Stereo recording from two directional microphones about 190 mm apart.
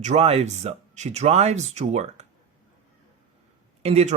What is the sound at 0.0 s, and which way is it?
Speech, 35° right (ahead or behind).